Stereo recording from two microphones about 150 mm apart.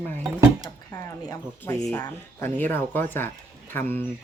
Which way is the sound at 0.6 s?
20° left (ahead or behind).